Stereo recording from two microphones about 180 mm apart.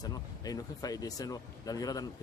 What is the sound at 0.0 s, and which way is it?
Speech, 20° left (ahead or behind).